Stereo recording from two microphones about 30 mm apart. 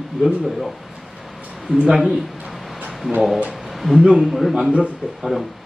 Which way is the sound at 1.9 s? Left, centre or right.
Centre.